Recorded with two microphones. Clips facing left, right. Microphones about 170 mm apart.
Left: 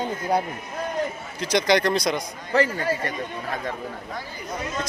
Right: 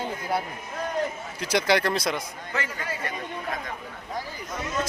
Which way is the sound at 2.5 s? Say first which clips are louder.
Left 11 dB; 35° left (ahead or behind).